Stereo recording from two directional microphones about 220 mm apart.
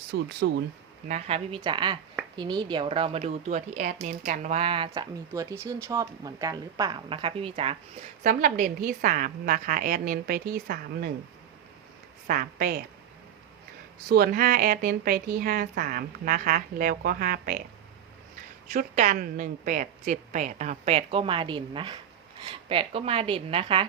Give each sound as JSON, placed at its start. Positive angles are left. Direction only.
{"t": 0.1, "sound": "speech", "side_deg": -50}
{"t": 1.0, "sound": "a woman's voice", "side_deg": -30}
{"t": 5.3, "sound": "speech", "side_deg": -15}
{"t": 8.2, "sound": "a woman's voice", "side_deg": -35}
{"t": 12.3, "sound": "a woman's voice", "side_deg": -40}
{"t": 14.1, "sound": "a woman's voice", "side_deg": -45}
{"t": 18.7, "sound": "a woman's voice", "side_deg": -40}